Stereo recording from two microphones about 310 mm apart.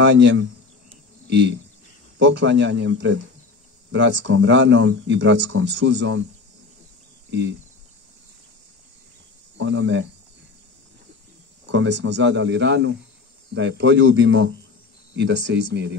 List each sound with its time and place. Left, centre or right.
0.0 s speech: right
2.1 s speech: right
7.2 s speech: right
9.6 s speech: right
11.6 s speech: right